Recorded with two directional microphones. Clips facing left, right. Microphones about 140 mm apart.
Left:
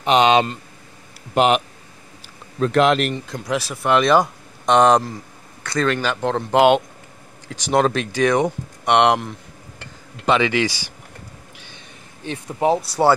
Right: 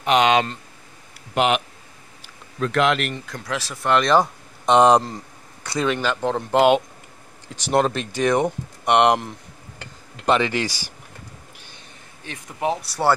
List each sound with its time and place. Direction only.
0.0 s speech: 25° left (ahead or behind)
2.6 s speech: 35° left (ahead or behind)
3.3 s speech: 15° left (ahead or behind); by 9.2 s 5° right (ahead or behind)
10.2 s speech: centre (ahead or behind)
12.3 s speech: 30° left (ahead or behind)